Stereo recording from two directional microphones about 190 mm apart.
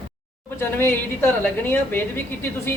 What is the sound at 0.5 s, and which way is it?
Speech, 10° left (ahead or behind).